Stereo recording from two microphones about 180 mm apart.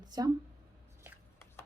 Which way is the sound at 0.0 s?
20° right (ahead or behind).